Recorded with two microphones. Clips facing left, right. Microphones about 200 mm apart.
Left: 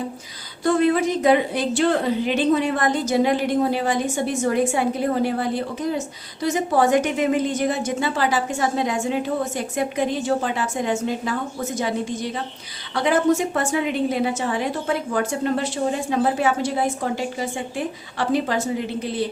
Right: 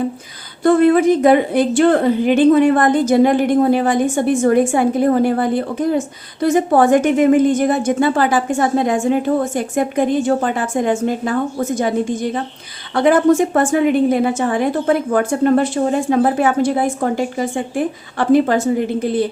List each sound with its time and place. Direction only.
0.6 s a woman's voice: 55° right (ahead or behind)